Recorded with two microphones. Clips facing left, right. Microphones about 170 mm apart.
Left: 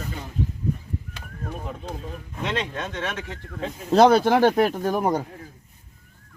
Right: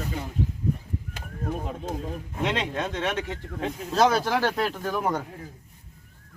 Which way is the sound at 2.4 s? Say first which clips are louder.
Right 1 dB; 20° right (ahead or behind).